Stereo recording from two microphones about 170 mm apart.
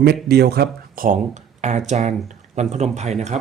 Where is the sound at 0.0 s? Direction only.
70° right (ahead or behind); by 1.2 s 55° right (ahead or behind).